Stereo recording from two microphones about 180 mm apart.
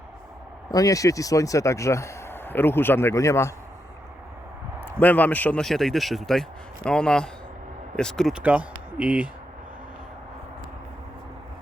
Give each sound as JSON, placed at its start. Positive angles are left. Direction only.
{"t": 0.7, "sound": "speech", "side_deg": 20}
{"t": 4.8, "sound": "a man's voice", "side_deg": 10}